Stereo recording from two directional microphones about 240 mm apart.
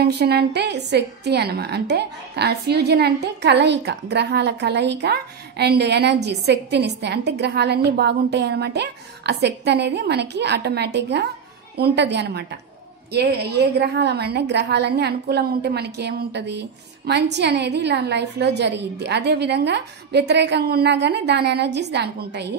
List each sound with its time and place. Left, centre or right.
0.0 s a woman's voice: right